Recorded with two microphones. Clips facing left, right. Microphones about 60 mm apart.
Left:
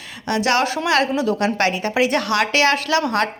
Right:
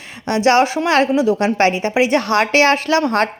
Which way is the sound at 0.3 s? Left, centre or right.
Right.